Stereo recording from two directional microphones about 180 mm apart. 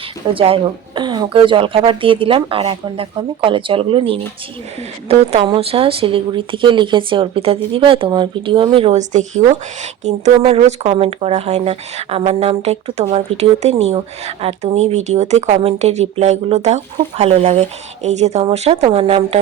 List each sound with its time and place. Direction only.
0.3 s speech: 30° right (ahead or behind)